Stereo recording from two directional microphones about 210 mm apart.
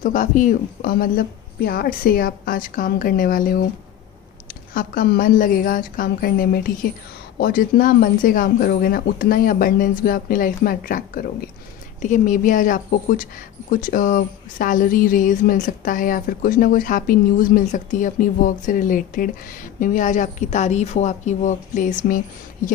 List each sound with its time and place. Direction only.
0.0 s speech: 40° left (ahead or behind)
4.7 s speech: 45° left (ahead or behind)